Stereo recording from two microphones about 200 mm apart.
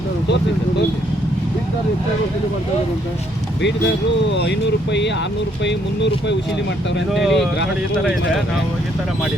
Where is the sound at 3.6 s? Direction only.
60° left (ahead or behind).